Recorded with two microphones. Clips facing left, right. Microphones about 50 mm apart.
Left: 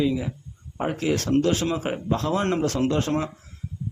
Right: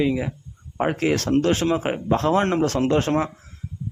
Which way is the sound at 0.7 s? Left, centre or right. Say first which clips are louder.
Right 3 dB; right.